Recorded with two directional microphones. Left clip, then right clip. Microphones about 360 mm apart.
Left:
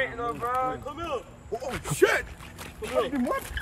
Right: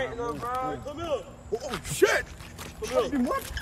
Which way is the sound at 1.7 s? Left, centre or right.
Centre.